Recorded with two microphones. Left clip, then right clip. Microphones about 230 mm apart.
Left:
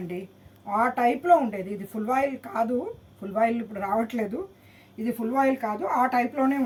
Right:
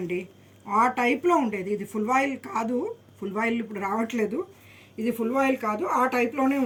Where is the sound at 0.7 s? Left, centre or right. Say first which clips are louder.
Right 1 dB; centre.